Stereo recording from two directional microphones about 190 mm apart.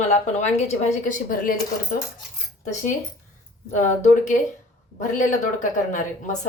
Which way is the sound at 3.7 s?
40° left (ahead or behind).